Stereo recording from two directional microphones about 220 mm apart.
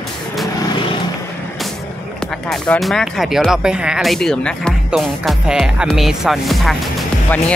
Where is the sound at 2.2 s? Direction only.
5° left (ahead or behind).